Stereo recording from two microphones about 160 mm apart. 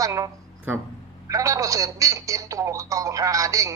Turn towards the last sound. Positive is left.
turn(degrees=-20)  # may be behind; listen again after turning